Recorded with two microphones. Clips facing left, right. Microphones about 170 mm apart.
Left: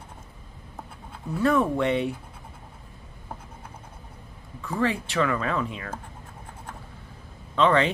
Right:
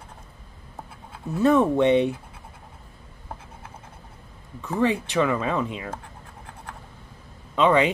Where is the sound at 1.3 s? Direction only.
20° right (ahead or behind).